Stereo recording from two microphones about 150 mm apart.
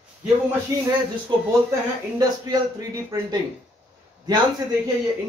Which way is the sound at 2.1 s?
25° right (ahead or behind).